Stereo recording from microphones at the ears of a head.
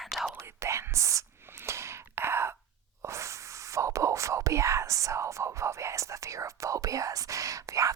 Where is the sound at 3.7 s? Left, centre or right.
Right.